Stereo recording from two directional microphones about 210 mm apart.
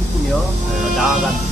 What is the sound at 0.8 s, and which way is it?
Speech, centre (ahead or behind).